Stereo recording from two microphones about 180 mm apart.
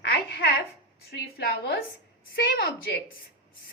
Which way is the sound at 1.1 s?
65° left (ahead or behind).